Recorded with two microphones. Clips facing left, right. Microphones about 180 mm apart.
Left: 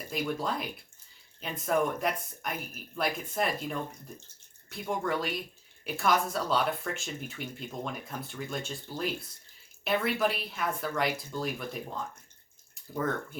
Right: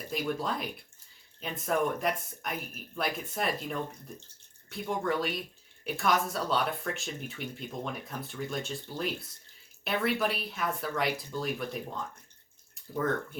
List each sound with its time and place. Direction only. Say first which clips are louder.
0.1 s speech: even; centre (ahead or behind)